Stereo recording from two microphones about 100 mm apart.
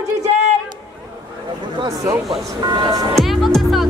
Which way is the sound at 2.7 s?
35° right (ahead or behind).